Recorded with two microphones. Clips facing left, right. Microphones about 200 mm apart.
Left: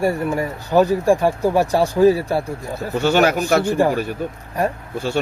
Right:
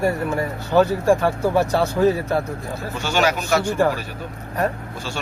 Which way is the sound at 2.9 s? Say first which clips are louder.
Left 5 dB; 60° left (ahead or behind).